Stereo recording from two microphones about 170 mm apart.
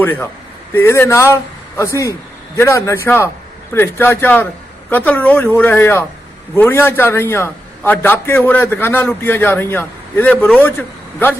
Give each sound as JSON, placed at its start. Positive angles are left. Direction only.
{"t": 0.0, "sound": "a man's voice", "side_deg": 10}